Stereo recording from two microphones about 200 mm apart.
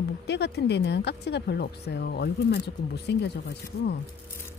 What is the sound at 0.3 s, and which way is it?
Speech, 55° left (ahead or behind).